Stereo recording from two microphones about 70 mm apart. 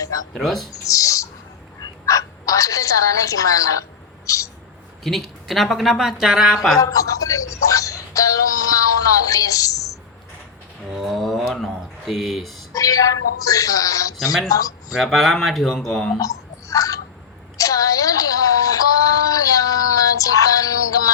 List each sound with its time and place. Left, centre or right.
0.3 s speech: centre
0.9 s bird: left
1.8 s a sound: left
5.0 s speech: centre
6.7 s music: left
10.8 s speech: centre
12.7 s speech: left
14.9 s speech: centre
16.1 s a sound: left